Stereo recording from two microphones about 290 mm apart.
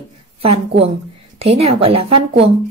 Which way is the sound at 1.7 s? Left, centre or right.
Centre.